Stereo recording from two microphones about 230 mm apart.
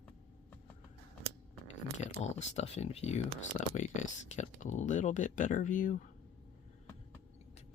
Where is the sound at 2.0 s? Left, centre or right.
Left.